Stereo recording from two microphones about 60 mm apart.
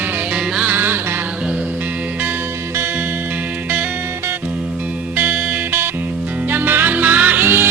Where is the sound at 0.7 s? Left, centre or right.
Right.